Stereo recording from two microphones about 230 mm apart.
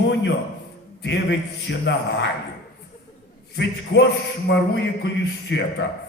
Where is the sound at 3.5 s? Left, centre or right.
Left.